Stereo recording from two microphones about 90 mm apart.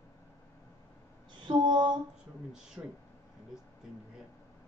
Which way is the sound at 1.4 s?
60° right (ahead or behind).